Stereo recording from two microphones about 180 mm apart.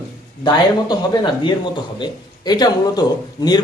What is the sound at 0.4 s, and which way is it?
A man's voice, 20° left (ahead or behind).